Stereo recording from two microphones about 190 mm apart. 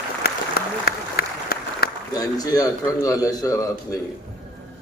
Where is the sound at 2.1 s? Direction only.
20° left (ahead or behind).